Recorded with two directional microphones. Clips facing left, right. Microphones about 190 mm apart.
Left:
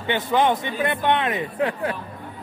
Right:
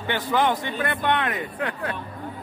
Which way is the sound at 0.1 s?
20° left (ahead or behind).